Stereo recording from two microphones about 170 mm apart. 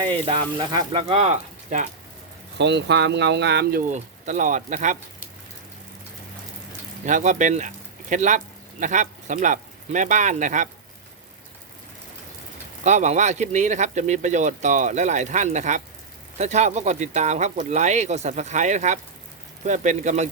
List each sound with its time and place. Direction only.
0.0 s speech: 30° right (ahead or behind)
2.6 s speech: 90° right; by 4.9 s 45° right (ahead or behind)
7.0 s speech: 45° right (ahead or behind)
12.8 s speech: 45° right (ahead or behind)